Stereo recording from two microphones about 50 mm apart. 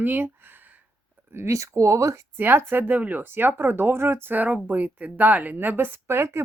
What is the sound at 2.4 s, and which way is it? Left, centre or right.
Speech, right.